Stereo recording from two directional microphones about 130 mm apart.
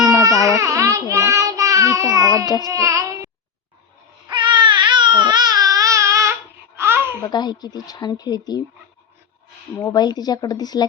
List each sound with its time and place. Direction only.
0.0 s baby cry: 25° right (ahead or behind)
0.4 s child singing: 25° right (ahead or behind)
2.6 s a sound: 25° right (ahead or behind)
4.3 s baby cry: 35° right (ahead or behind)
6.7 s babbling: 20° right (ahead or behind)
7.2 s speech: 35° left (ahead or behind)
9.8 s speech: 30° left (ahead or behind)